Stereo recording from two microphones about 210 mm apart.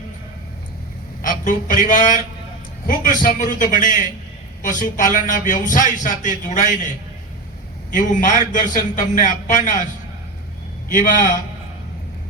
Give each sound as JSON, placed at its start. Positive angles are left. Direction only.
{"t": 1.2, "sound": "a man's voice", "side_deg": 40}
{"t": 7.9, "sound": "a man's voice", "side_deg": 40}
{"t": 10.9, "sound": "a man's voice", "side_deg": 40}